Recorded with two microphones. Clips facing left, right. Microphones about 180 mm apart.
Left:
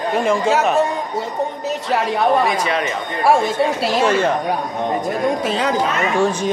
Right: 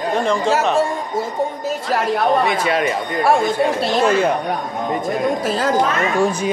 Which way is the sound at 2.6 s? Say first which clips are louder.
Right 3 dB; 35° right (ahead or behind).